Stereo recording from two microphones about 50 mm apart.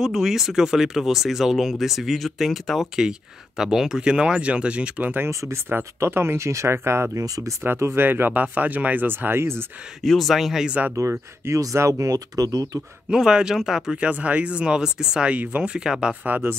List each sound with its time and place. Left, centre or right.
0.0 s speech: centre; by 5.1 s right
5.3 s speech: right
5.9 s speech: right
7.6 s speech: right
10.0 s speech: centre
11.0 s speech: right
13.1 s speech: centre
13.9 s speech: right
15.3 s speech: right
15.6 s speech: centre